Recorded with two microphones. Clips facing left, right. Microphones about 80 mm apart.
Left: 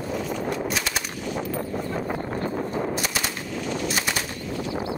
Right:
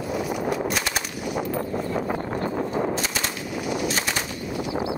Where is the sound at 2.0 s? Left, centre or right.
Right.